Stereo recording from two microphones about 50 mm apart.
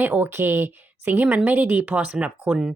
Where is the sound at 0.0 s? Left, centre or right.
Right.